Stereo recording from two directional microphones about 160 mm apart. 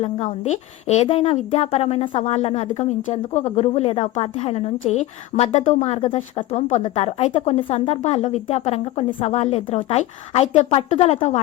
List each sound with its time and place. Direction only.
0.0 s a woman's voice: 45° left (ahead or behind)